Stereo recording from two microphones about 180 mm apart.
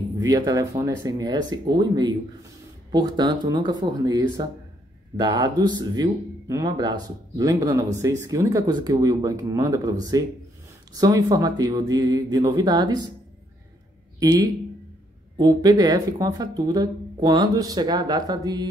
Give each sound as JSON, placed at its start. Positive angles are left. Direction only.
{"t": 0.2, "sound": "speech", "side_deg": -20}
{"t": 14.2, "sound": "speech", "side_deg": -20}